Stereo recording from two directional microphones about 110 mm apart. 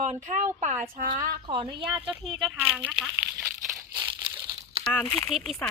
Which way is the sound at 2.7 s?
15° right (ahead or behind).